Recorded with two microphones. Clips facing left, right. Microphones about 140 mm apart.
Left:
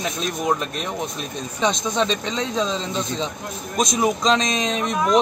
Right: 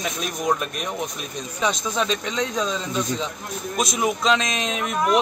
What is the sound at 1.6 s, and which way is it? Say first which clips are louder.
Speech: left 2 dB; 30° left (ahead or behind).